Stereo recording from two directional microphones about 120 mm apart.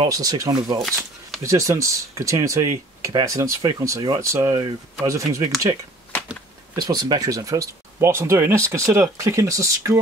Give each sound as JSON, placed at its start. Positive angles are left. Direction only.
{"t": 0.0, "sound": "speech", "side_deg": -30}
{"t": 0.7, "sound": "speech", "side_deg": 0}
{"t": 1.4, "sound": "speech", "side_deg": -25}
{"t": 6.8, "sound": "speech", "side_deg": -35}